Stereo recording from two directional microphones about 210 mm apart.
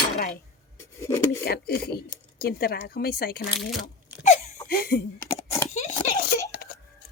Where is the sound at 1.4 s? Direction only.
45° left (ahead or behind).